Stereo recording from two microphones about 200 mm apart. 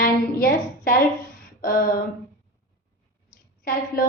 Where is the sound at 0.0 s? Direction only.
45° left (ahead or behind).